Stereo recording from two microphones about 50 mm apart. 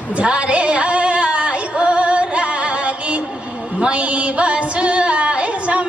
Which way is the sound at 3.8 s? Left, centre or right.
Right.